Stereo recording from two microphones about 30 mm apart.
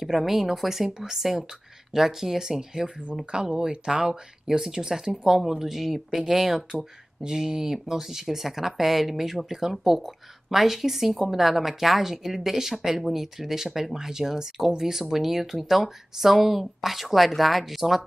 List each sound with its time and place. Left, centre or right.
0.0 s speech: centre
3.3 s speech: right
5.4 s speech: centre
7.2 s speech: right; by 18.0 s centre